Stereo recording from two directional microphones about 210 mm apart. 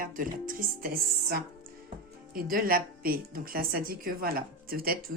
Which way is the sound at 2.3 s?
45° right (ahead or behind).